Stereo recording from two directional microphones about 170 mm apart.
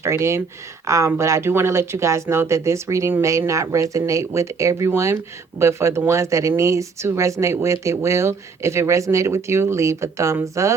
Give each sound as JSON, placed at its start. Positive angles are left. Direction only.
{"t": 0.0, "sound": "speech", "side_deg": -15}